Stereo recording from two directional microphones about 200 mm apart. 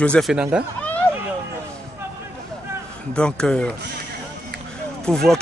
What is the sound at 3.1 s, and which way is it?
Speech, 5° left (ahead or behind).